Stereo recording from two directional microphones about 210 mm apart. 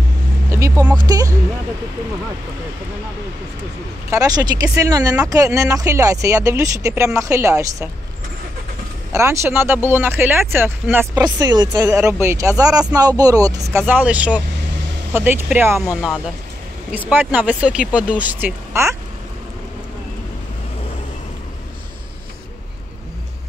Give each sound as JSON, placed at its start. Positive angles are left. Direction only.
{"t": 0.5, "sound": "speech", "side_deg": -15}
{"t": 4.1, "sound": "speech", "side_deg": -15}
{"t": 9.1, "sound": "speech", "side_deg": -15}